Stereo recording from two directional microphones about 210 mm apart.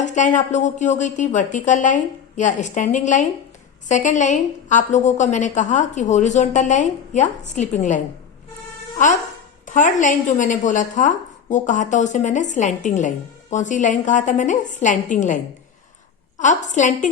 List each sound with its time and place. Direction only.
0.0 s a woman's voice: 35° left (ahead or behind)
16.4 s a woman's voice: 35° left (ahead or behind)